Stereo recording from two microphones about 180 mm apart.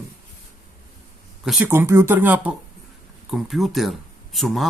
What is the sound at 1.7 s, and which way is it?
Speech, 15° right (ahead or behind).